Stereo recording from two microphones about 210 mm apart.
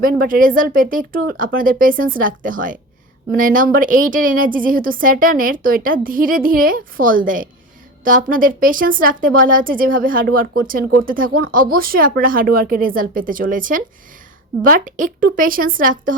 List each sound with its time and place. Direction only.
0.0 s a woman's voice: 40° right (ahead or behind)